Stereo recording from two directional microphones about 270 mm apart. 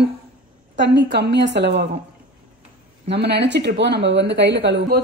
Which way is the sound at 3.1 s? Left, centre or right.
Right.